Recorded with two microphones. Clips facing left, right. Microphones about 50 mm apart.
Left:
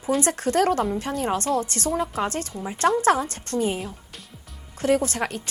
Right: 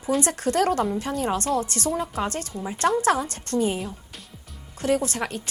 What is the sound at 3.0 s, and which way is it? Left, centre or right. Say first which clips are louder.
Speech: left 2 dB; left.